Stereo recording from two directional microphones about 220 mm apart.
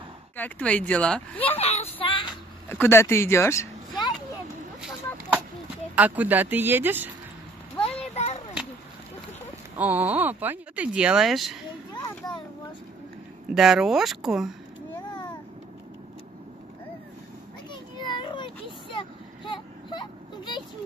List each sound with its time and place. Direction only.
0.4 s speech: 5° left (ahead or behind)
1.6 s a sound: 30° left (ahead or behind)
2.7 s speech: 10° left (ahead or behind)
5.9 s speech: 5° right (ahead or behind)
7.7 s a sound: 25° left (ahead or behind)
9.8 s speech: 5° right (ahead or behind)
13.5 s speech: centre (ahead or behind)
17.6 s vehicle: 20° left (ahead or behind)